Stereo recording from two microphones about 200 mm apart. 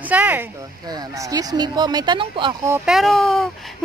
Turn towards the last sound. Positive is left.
turn(degrees=0)  # may be behind; listen again after turning